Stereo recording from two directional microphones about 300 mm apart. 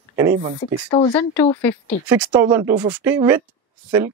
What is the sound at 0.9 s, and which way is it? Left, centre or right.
A woman's voice, centre.